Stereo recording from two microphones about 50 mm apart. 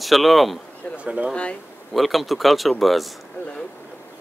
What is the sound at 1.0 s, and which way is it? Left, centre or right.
Speech, right.